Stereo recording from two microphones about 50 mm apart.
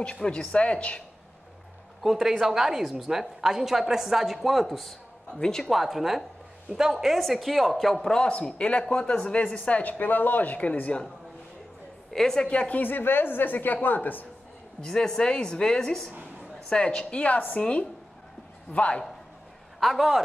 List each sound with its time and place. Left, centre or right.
0.0 s speech: left
2.0 s a woman's voice: centre
5.4 s a woman's voice: centre
5.7 s a woman's voice: centre
8.2 s speech: centre
12.1 s a woman's voice: centre
12.4 s a woman's voice: left
14.8 s a woman's voice: centre
19.8 s a woman's voice: centre